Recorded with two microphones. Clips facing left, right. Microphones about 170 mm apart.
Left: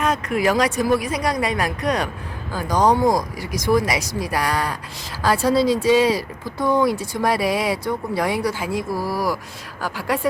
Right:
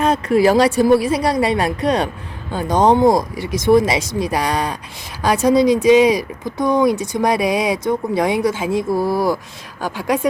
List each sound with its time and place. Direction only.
0.0 s speech: 30° right (ahead or behind)